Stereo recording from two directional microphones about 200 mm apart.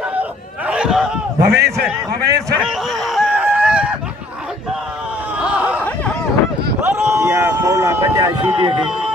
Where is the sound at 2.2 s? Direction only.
55° right (ahead or behind).